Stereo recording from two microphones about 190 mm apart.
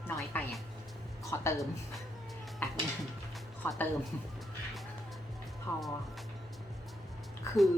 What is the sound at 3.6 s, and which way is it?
Speech, 10° left (ahead or behind).